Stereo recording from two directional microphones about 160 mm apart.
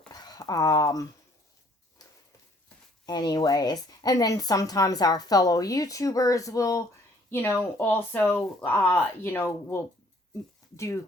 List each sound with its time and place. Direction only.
0.1 s a sound: 25° left (ahead or behind)
3.1 s speech: 25° left (ahead or behind)
10.8 s speech: 20° left (ahead or behind)